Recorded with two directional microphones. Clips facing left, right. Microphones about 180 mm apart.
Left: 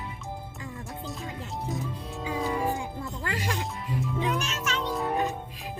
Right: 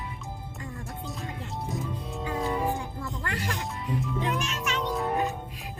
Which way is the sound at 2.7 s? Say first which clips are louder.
Left 1 dB; 20° left (ahead or behind).